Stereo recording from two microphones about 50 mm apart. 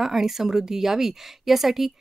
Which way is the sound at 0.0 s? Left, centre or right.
Centre.